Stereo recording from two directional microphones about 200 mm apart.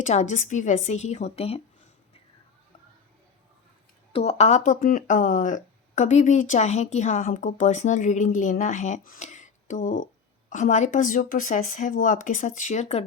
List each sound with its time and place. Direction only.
0.0 s speech: 35° left (ahead or behind)
4.1 s speech: 30° left (ahead or behind)